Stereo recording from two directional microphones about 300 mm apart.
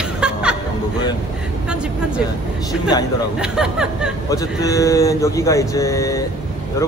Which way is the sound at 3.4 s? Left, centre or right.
Centre.